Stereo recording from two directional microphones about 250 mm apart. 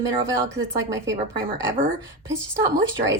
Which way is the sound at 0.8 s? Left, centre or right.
Centre.